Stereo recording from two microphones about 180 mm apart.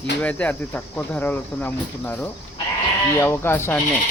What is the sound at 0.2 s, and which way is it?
Speech, 5° left (ahead or behind).